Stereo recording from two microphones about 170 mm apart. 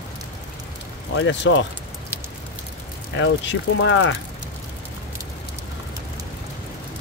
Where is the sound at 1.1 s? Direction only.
90° left.